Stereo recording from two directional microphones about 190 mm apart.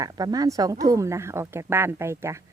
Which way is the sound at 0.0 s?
20° right (ahead or behind).